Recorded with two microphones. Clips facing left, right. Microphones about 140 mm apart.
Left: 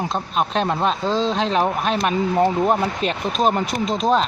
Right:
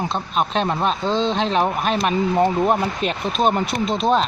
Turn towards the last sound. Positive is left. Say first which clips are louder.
# even
turn(degrees=0)  # may be behind; listen again after turning